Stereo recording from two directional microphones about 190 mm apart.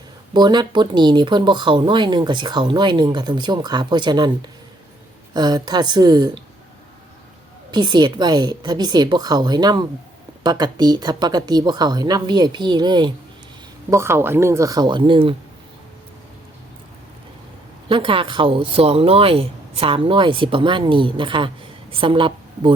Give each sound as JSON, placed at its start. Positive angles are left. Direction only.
{"t": 0.3, "sound": "speech", "side_deg": -20}
{"t": 5.3, "sound": "speech", "side_deg": -20}
{"t": 7.7, "sound": "speech", "side_deg": -20}
{"t": 17.8, "sound": "a woman's voice", "side_deg": -25}